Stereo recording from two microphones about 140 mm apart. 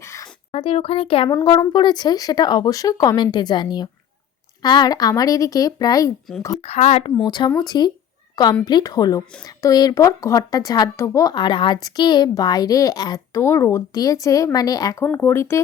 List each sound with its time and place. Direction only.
0.0 s a sound: 20° left (ahead or behind)
0.5 s speech: 40° left (ahead or behind)
1.3 s speech: 20° left (ahead or behind)
1.5 s speech: 35° left (ahead or behind)
6.6 s speech: 50° left (ahead or behind)
7.3 s speech: 35° left (ahead or behind); by 15.6 s 20° left (ahead or behind)